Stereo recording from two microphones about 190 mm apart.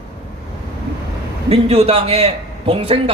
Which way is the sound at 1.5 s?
35° right (ahead or behind).